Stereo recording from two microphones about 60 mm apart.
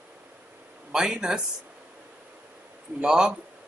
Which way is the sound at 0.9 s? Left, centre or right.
Centre.